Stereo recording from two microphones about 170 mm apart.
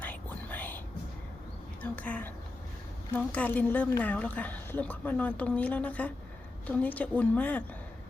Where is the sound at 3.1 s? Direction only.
10° left (ahead or behind).